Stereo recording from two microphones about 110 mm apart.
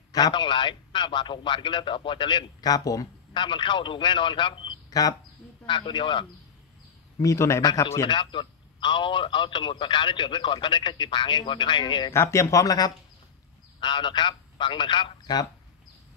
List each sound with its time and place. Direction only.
0.1 s a man's voice: 40° left (ahead or behind)
3.3 s a man's voice: 45° left (ahead or behind)
7.2 s speech: 30° left (ahead or behind)
8.1 s a man's voice: 45° left (ahead or behind)
12.1 s speech: 25° left (ahead or behind)
13.7 s a man's voice: 45° left (ahead or behind)